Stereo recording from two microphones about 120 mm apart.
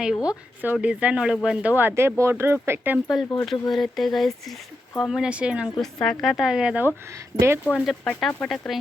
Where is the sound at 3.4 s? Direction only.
Centre (ahead or behind).